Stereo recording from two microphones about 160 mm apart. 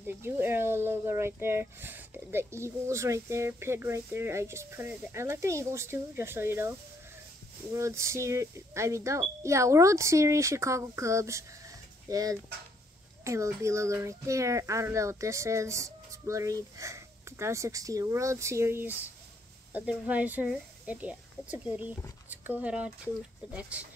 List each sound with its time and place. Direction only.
0.0 s speech: 15° right (ahead or behind)
7.7 s speech: 20° right (ahead or behind)